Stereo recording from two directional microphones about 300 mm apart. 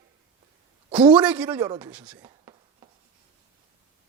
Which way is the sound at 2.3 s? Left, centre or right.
Centre.